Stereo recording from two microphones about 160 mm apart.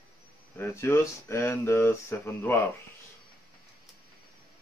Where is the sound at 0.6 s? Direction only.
15° left (ahead or behind).